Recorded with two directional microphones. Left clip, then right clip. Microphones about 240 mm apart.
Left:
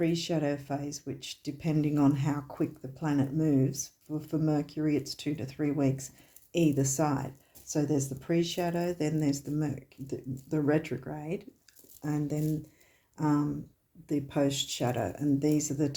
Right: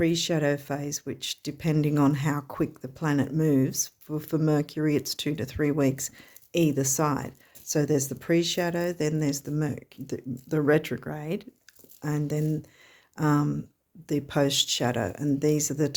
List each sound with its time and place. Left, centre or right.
0.0 s speech: right